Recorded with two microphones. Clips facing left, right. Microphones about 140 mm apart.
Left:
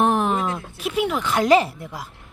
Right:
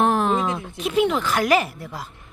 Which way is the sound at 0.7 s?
5° left (ahead or behind).